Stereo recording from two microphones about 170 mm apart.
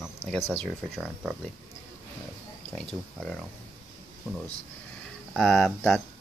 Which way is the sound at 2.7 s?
5° left (ahead or behind).